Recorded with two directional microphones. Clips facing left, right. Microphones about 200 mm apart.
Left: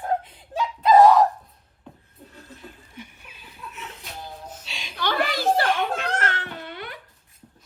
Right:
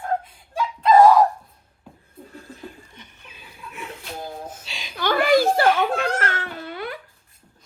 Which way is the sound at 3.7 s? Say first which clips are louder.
Right 6 dB; 55° right (ahead or behind).